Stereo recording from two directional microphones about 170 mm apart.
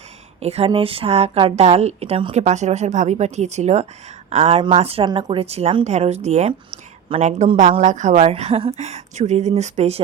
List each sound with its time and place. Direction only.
0.3 s speech: 35° right (ahead or behind)